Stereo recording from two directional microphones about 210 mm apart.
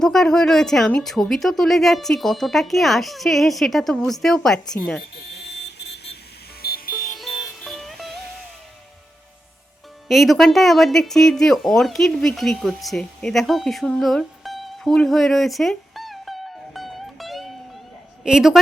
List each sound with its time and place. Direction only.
0.0 s a woman's voice: centre (ahead or behind)
5.2 s vehicle: 50° left (ahead or behind)
6.6 s music: 45° left (ahead or behind)
7.6 s music: centre (ahead or behind)
10.1 s a man's voice: centre (ahead or behind)